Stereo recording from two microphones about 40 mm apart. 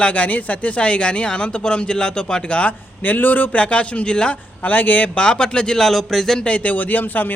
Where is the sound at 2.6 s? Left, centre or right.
Left.